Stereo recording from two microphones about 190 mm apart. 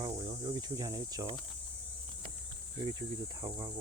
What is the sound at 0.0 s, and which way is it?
Cricket, 20° right (ahead or behind).